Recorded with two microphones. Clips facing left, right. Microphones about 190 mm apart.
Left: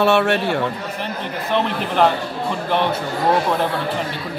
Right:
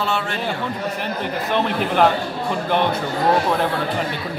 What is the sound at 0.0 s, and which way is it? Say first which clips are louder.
Speech: left 8 dB; 70° left (ahead or behind).